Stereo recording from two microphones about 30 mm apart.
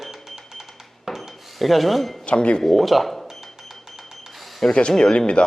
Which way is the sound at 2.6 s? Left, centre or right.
Centre.